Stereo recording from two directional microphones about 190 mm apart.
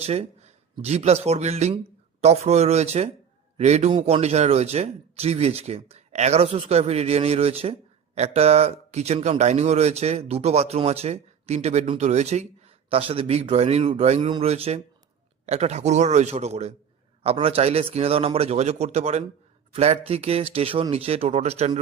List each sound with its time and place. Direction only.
0.0 s speech: 35° right (ahead or behind)